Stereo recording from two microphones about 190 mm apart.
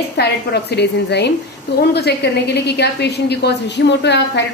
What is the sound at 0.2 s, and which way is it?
A woman's voice, 60° left (ahead or behind).